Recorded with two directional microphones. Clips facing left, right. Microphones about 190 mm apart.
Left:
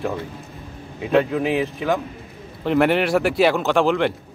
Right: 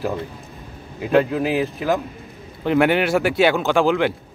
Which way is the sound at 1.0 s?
Centre (ahead or behind).